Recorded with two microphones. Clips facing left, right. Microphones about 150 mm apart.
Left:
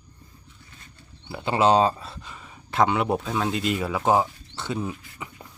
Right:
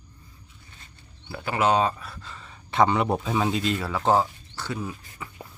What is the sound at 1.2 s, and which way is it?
Speech, 25° left (ahead or behind).